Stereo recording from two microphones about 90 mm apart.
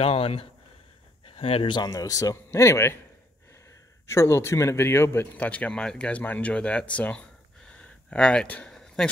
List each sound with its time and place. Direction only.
0.0 s a man's voice: 90° left; by 3.0 s 30° left (ahead or behind)
4.1 s speech: 30° left (ahead or behind); by 8.7 s 10° left (ahead or behind)
8.7 s a sound: 5° left (ahead or behind)